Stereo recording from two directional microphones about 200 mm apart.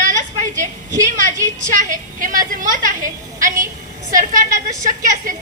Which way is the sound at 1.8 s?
40° right (ahead or behind).